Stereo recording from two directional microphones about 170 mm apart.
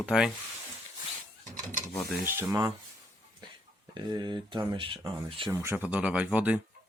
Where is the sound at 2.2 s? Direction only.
15° right (ahead or behind).